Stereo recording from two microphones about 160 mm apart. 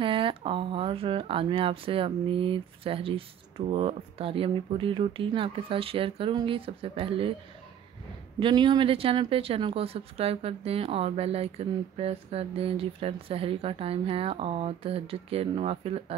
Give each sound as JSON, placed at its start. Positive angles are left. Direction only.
{"t": 0.0, "sound": "speech", "side_deg": -30}
{"t": 8.4, "sound": "speech", "side_deg": -30}